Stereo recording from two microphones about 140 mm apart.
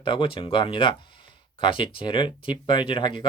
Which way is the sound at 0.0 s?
35° left (ahead or behind).